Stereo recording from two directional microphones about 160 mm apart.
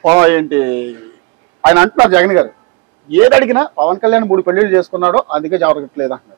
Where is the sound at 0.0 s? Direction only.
15° right (ahead or behind).